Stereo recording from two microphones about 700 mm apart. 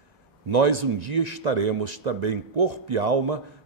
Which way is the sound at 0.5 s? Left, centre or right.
Right.